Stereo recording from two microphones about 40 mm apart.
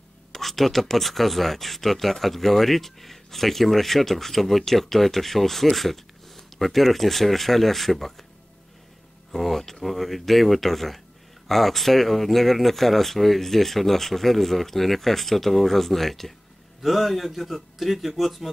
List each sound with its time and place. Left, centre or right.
0.3 s speech: centre
9.3 s speech: centre